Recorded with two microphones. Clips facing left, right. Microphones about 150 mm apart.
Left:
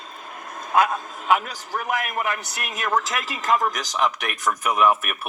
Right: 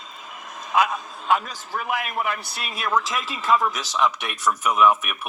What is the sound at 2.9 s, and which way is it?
Speech, 40° left (ahead or behind).